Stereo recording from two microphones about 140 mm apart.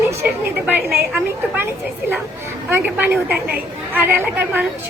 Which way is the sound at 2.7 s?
15° right (ahead or behind).